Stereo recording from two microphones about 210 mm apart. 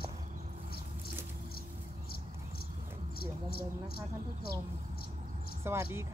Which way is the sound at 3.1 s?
45° left (ahead or behind).